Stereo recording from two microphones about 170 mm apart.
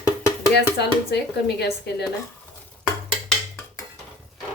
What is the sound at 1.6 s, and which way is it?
Speech, 75° left (ahead or behind).